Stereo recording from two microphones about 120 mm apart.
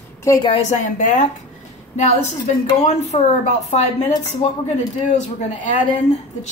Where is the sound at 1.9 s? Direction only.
70° left (ahead or behind).